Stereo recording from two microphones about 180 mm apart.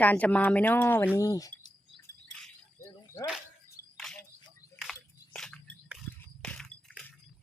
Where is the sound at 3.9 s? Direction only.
5° left (ahead or behind).